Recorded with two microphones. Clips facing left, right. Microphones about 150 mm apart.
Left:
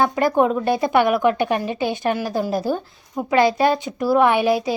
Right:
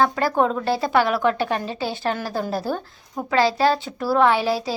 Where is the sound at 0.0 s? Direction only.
20° left (ahead or behind).